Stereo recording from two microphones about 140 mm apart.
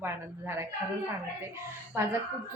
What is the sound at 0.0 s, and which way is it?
Speech, 15° right (ahead or behind).